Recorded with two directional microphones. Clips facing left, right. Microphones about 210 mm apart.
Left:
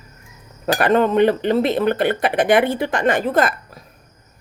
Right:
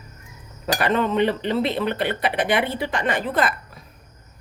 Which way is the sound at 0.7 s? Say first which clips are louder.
Left 5 dB; 50° left (ahead or behind).